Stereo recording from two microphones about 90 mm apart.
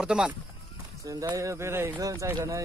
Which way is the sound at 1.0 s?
40° right (ahead or behind).